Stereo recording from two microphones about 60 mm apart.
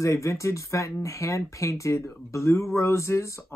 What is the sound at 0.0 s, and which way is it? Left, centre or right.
Speech, left.